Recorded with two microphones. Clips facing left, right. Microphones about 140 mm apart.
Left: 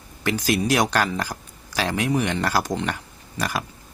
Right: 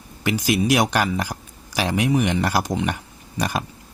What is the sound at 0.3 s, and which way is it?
Speech, 15° right (ahead or behind).